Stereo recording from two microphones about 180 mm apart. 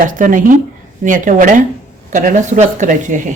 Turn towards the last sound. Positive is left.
turn(degrees=-45)  # may be behind; listen again after turning